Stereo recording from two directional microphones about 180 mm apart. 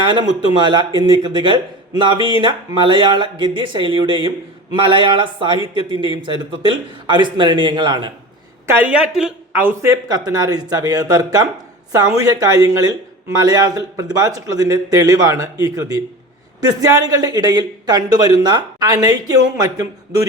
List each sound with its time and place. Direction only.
0.0 s a man's voice: 25° right (ahead or behind)
8.6 s a man's voice: 10° right (ahead or behind)